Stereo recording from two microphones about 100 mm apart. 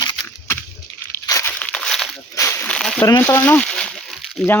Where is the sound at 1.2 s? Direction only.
35° left (ahead or behind).